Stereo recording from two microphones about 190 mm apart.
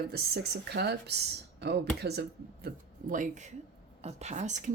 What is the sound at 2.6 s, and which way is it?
Speech, 45° right (ahead or behind).